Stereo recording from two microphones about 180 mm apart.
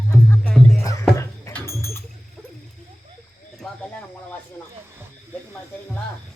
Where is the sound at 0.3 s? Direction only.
5° left (ahead or behind).